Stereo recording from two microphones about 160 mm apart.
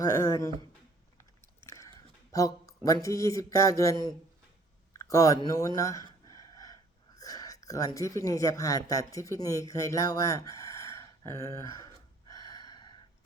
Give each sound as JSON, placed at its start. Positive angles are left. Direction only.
{"t": 0.0, "sound": "speech", "side_deg": 20}
{"t": 1.6, "sound": "biting", "side_deg": 20}
{"t": 2.3, "sound": "speech", "side_deg": 20}
{"t": 4.9, "sound": "a sound", "side_deg": 20}
{"t": 7.2, "sound": "speech", "side_deg": 20}